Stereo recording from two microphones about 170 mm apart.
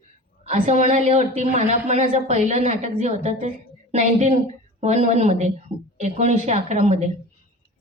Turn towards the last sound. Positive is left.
turn(degrees=-40)  # may be behind; listen again after turning